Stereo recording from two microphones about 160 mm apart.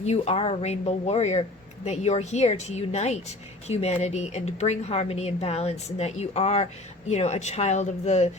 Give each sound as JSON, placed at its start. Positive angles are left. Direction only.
{"t": 0.0, "sound": "speech", "side_deg": 40}